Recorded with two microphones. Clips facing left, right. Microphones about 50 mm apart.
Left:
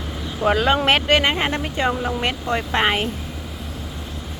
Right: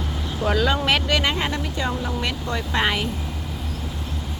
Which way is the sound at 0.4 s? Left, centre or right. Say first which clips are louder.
Left 4 dB; left.